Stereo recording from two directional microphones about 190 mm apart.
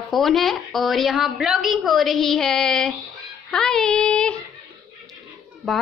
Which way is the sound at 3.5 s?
Centre (ahead or behind).